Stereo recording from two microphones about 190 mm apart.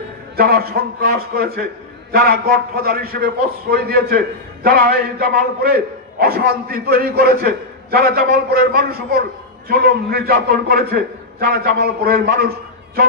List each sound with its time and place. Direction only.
0.4 s a man's voice: 55° right (ahead or behind)